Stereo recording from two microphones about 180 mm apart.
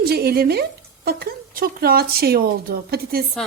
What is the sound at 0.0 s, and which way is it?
Speech, 60° right (ahead or behind).